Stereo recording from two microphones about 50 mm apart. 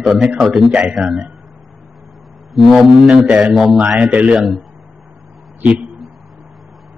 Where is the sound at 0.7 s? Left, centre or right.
Right.